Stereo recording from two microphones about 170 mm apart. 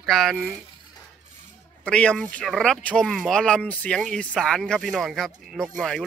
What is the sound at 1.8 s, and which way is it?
Speech, 5° left (ahead or behind).